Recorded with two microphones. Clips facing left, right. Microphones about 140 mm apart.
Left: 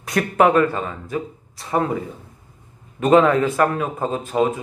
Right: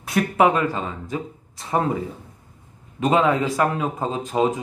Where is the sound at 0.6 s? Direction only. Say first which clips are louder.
Left 5 dB; 20° right (ahead or behind).